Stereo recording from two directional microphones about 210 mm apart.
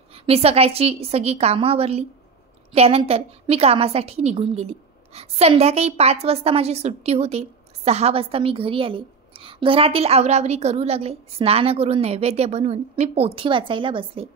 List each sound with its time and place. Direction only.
0.1 s a woman's voice: 30° right (ahead or behind)